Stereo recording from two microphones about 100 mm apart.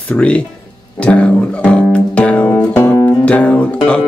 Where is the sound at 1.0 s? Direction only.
10° left (ahead or behind).